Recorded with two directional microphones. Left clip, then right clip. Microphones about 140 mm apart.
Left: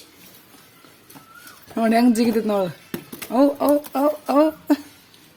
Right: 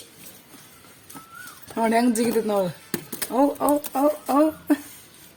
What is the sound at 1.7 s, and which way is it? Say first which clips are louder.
A man's voice: left 3 dB; 35° left (ahead or behind).